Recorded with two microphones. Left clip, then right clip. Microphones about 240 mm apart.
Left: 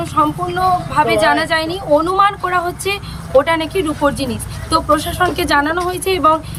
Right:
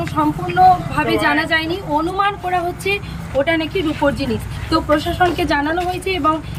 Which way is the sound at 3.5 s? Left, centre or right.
Centre.